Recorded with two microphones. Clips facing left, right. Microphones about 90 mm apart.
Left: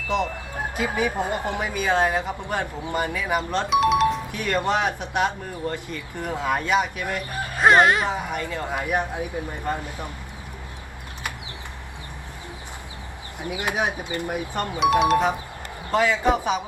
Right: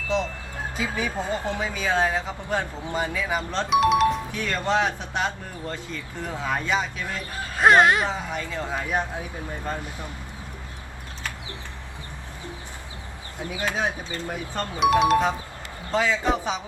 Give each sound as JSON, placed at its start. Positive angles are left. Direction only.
{"t": 0.9, "sound": "speech", "side_deg": 15}
{"t": 3.7, "sound": "speech", "side_deg": 0}
{"t": 4.3, "sound": "speech", "side_deg": 15}
{"t": 7.6, "sound": "speech", "side_deg": 0}
{"t": 8.1, "sound": "speech", "side_deg": 60}
{"t": 8.4, "sound": "speech", "side_deg": 15}
{"t": 13.4, "sound": "speech", "side_deg": 15}
{"t": 14.8, "sound": "speech", "side_deg": 0}
{"t": 15.9, "sound": "speech", "side_deg": 15}